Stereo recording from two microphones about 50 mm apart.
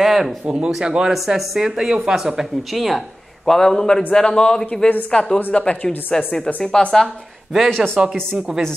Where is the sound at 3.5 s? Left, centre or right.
Centre.